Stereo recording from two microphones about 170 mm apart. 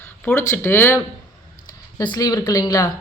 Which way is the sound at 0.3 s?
10° left (ahead or behind).